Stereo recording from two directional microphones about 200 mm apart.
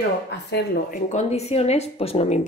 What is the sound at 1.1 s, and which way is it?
A woman's voice, 35° left (ahead or behind).